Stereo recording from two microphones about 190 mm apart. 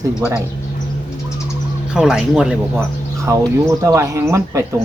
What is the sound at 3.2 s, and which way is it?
Speech, 15° right (ahead or behind).